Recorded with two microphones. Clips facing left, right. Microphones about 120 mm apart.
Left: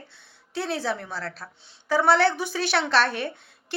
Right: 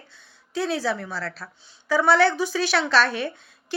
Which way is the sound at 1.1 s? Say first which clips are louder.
Right 2 dB; 20° left (ahead or behind).